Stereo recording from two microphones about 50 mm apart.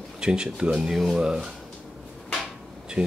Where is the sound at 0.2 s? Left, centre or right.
Centre.